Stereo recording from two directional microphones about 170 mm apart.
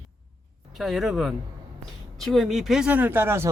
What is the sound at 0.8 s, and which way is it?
Speech, centre (ahead or behind).